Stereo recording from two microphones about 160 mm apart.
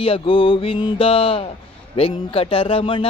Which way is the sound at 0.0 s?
35° left (ahead or behind).